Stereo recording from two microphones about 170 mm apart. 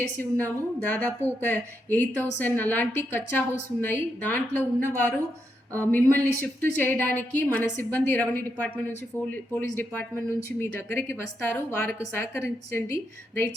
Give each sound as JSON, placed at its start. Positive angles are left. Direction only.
{"t": 0.2, "sound": "a woman's voice", "side_deg": 10}